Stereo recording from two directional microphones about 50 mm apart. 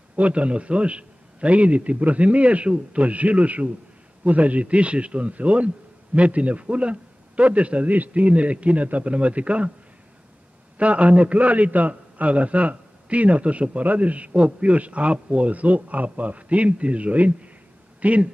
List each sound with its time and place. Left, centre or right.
0.1 s a man's voice: right
10.8 s a man's voice: right